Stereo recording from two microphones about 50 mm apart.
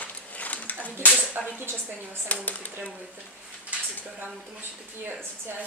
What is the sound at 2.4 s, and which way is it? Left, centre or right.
Speech, left.